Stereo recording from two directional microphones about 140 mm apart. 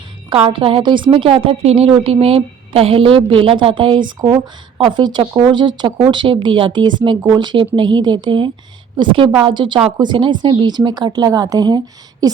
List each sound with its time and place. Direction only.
0.3 s a woman's voice: 40° right (ahead or behind)